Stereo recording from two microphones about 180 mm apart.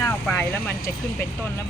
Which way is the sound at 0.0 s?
10° left (ahead or behind).